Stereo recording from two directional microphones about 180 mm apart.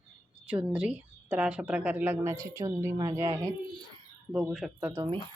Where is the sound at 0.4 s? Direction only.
5° right (ahead or behind).